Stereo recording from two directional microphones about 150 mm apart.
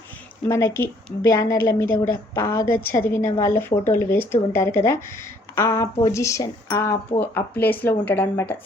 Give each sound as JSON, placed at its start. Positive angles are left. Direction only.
{"t": 0.5, "sound": "a woman's voice", "side_deg": 15}